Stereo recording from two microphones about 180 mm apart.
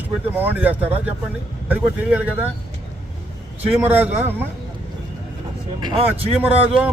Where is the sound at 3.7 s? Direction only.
10° right (ahead or behind).